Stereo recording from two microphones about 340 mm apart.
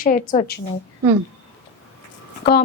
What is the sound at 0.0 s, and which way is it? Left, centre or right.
Speech, left.